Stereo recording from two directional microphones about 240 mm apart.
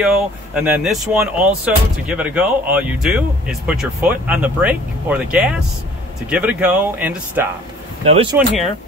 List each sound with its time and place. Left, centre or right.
0.0 s speech: centre
8.0 s speech: right